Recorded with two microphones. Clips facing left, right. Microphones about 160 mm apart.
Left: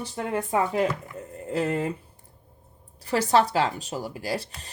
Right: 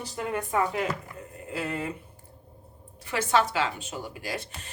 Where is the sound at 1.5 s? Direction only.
40° left (ahead or behind).